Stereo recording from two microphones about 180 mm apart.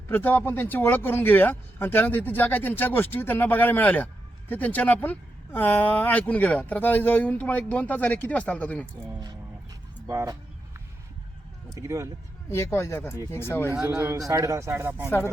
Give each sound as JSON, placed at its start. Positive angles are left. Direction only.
{"t": 0.1, "sound": "speech", "side_deg": 10}
{"t": 10.1, "sound": "speech", "side_deg": -15}
{"t": 11.7, "sound": "speech", "side_deg": -15}
{"t": 12.5, "sound": "speech", "side_deg": 15}
{"t": 13.9, "sound": "speech", "side_deg": -15}